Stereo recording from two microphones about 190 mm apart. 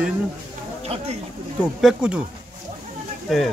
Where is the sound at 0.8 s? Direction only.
30° right (ahead or behind).